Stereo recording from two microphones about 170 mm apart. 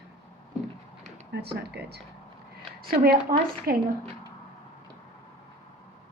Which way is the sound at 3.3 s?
55° right (ahead or behind).